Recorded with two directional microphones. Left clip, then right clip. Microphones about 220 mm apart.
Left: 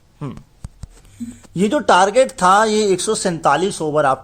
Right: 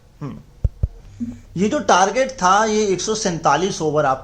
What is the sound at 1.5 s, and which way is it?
Speech, 40° left (ahead or behind).